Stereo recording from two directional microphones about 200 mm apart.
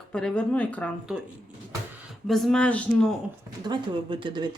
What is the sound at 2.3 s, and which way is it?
Speech, centre (ahead or behind).